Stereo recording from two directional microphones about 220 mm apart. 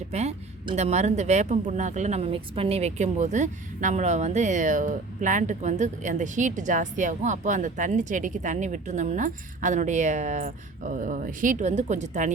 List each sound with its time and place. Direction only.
0.1 s speech: 30° right (ahead or behind)